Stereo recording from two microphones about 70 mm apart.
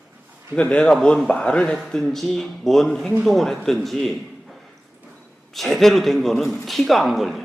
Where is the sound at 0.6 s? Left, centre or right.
Centre.